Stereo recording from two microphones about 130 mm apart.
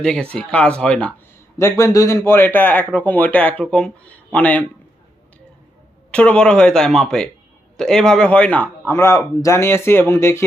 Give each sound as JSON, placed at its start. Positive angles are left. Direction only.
{"t": 0.0, "sound": "a man's voice", "side_deg": 5}
{"t": 1.5, "sound": "a man's voice", "side_deg": 20}
{"t": 6.1, "sound": "a man's voice", "side_deg": 10}